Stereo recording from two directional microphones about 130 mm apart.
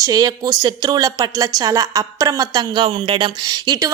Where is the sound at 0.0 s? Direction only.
30° right (ahead or behind).